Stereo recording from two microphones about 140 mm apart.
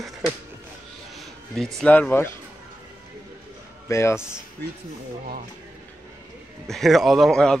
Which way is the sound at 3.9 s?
20° left (ahead or behind).